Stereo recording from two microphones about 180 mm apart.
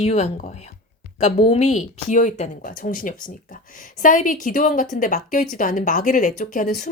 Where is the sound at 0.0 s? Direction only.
35° left (ahead or behind).